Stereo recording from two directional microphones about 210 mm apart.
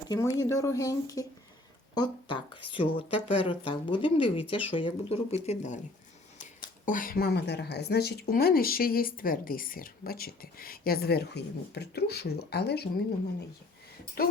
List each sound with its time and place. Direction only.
0.1 s speech: 15° left (ahead or behind); by 5.8 s 35° left (ahead or behind)
6.8 s speech: 40° left (ahead or behind)
14.2 s speech: 45° left (ahead or behind)